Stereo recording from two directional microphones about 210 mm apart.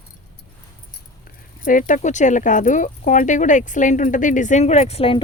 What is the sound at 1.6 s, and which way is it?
Speech, 40° left (ahead or behind).